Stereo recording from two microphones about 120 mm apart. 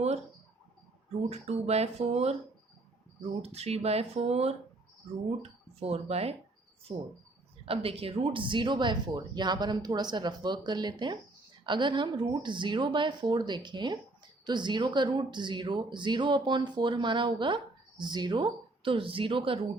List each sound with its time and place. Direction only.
1.3 s speech: 60° right (ahead or behind)
3.4 s speech: 60° right (ahead or behind)
6.9 s speech: 40° right (ahead or behind)
7.6 s speech: 50° right (ahead or behind)